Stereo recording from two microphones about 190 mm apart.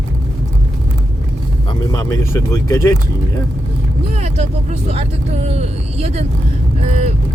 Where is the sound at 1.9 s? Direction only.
15° left (ahead or behind).